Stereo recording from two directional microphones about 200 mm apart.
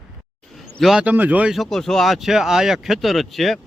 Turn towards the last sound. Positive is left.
turn(degrees=0)  # may be behind; listen again after turning